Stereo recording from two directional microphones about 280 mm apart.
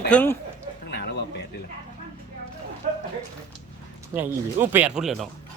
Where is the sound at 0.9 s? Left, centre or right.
Left.